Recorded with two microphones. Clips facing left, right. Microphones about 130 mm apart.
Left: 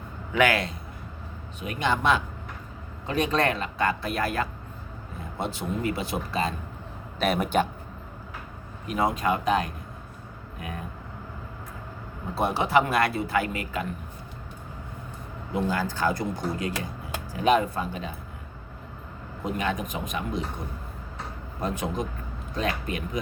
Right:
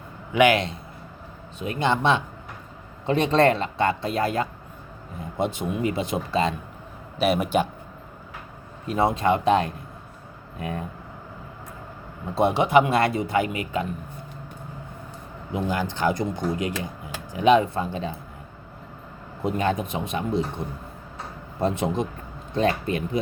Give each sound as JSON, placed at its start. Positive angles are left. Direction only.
{"t": 0.3, "sound": "speech", "side_deg": -20}
{"t": 7.2, "sound": "speech", "side_deg": -10}
{"t": 8.9, "sound": "speech", "side_deg": -30}
{"t": 12.3, "sound": "speech", "side_deg": -25}
{"t": 15.5, "sound": "speech", "side_deg": -20}
{"t": 19.5, "sound": "speech", "side_deg": -30}
{"t": 21.6, "sound": "speech", "side_deg": -25}